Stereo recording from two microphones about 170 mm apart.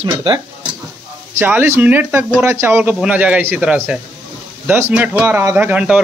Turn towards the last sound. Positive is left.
turn(degrees=-5)  # may be behind; listen again after turning